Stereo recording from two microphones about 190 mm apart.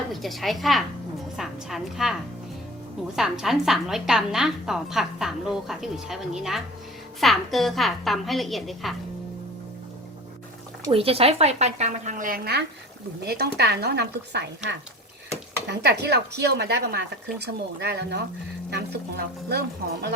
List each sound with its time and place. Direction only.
0.1 s a woman's voice: centre (ahead or behind)
3.2 s a woman's voice: centre (ahead or behind)
10.8 s a woman's voice: 30° right (ahead or behind); by 20.1 s 60° right (ahead or behind)